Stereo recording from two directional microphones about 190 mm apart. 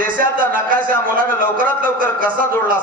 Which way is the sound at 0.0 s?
45° right (ahead or behind).